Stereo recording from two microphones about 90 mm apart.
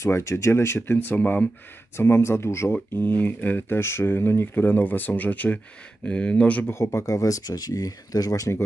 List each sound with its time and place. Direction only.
0.0 s speech: 30° left (ahead or behind); by 6.6 s 15° left (ahead or behind)
6.6 s speech: 30° left (ahead or behind)